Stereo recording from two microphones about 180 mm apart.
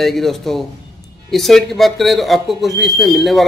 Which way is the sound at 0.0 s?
Centre (ahead or behind).